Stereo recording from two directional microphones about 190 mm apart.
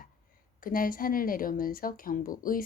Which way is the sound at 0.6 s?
50° left (ahead or behind).